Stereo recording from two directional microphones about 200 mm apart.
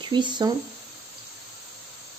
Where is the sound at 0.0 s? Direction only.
20° right (ahead or behind).